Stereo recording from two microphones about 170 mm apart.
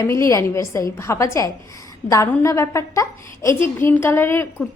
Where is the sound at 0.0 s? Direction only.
15° left (ahead or behind).